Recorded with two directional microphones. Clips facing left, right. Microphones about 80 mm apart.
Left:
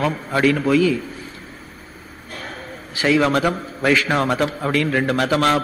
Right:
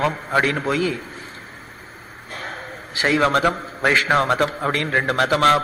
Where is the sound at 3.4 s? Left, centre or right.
Right.